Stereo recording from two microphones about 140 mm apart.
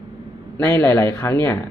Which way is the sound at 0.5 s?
15° left (ahead or behind).